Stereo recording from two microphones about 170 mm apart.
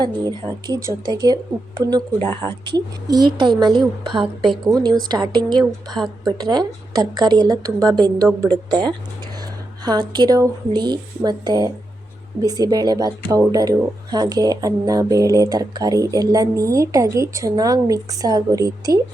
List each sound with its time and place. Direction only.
0.0 s speech: 25° right (ahead or behind)
9.8 s speech: 25° right (ahead or behind)